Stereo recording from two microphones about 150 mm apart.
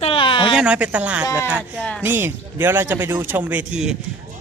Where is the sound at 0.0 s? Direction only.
35° left (ahead or behind).